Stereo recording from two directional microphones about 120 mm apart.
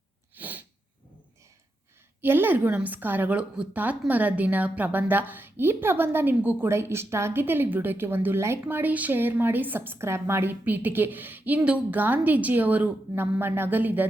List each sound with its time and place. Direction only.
0.3 s sneeze: 15° right (ahead or behind)
2.2 s a woman's voice: 15° right (ahead or behind)